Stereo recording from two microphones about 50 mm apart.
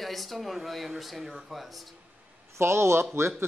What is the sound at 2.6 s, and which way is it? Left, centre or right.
Speech, right.